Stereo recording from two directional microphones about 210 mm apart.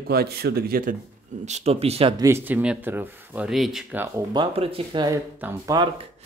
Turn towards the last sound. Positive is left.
turn(degrees=-10)  # may be behind; listen again after turning